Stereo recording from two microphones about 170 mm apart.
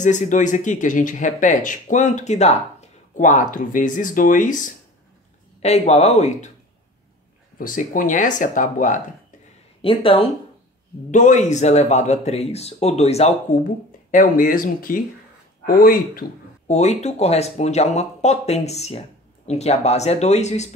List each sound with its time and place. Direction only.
0.0 s speech: 45° left (ahead or behind)
5.6 s speech: 40° left (ahead or behind)
7.5 s speech: 55° left (ahead or behind)
9.8 s speech: 35° left (ahead or behind)
11.1 s speech: 45° left (ahead or behind)
14.1 s speech: 50° left (ahead or behind)
16.6 s speech: 40° left (ahead or behind)